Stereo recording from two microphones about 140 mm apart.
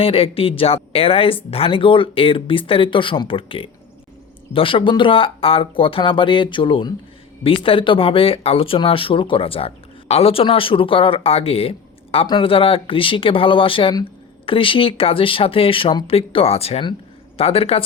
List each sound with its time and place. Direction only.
0.0 s speech: 40° left (ahead or behind)